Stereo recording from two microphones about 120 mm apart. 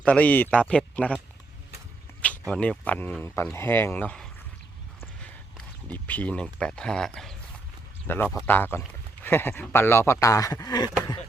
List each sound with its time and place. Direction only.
0.0 s speech: 10° left (ahead or behind)
2.5 s speech: 10° left (ahead or behind)
8.0 s speech: 15° left (ahead or behind); by 10.9 s 30° left (ahead or behind)